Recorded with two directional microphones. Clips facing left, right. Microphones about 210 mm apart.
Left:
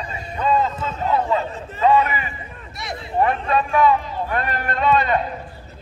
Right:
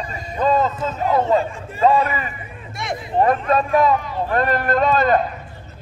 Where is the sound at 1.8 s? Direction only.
35° right (ahead or behind).